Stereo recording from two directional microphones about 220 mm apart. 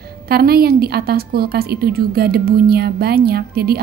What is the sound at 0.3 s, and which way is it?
A woman's voice, 45° right (ahead or behind).